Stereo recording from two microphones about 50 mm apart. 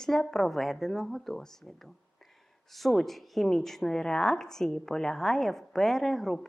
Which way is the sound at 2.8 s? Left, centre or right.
Centre.